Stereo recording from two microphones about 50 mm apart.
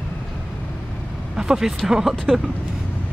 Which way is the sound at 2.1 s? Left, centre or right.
Centre.